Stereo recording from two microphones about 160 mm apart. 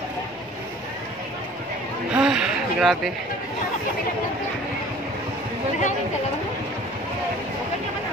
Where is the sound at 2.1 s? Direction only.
5° right (ahead or behind).